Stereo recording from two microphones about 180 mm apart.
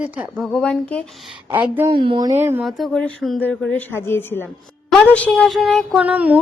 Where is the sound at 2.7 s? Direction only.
Centre (ahead or behind).